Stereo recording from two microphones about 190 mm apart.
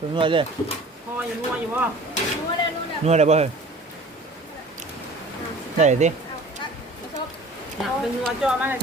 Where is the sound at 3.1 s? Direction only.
35° right (ahead or behind).